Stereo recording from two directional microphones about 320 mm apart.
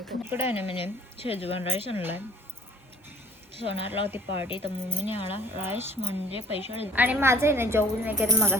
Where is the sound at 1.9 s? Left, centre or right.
Centre.